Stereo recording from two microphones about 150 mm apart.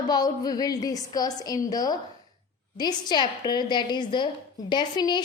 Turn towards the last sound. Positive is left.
turn(degrees=30)  # may be behind; listen again after turning